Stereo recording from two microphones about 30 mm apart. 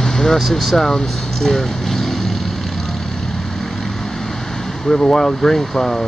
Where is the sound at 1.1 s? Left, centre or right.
Centre.